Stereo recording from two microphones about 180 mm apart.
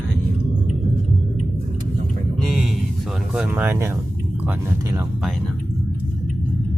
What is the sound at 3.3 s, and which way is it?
Speech, 5° right (ahead or behind).